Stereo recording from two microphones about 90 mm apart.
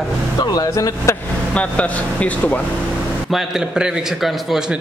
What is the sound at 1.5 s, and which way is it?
Speech, 15° left (ahead or behind).